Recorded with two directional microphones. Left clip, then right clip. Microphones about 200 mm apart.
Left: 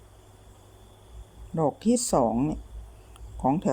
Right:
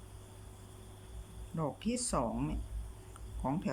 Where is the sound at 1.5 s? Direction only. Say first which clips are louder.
Left 13 dB; 30° left (ahead or behind).